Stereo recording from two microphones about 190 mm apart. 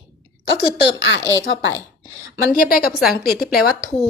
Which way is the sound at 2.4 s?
50° left (ahead or behind).